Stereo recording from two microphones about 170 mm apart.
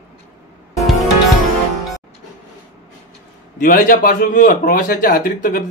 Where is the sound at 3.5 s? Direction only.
55° left (ahead or behind).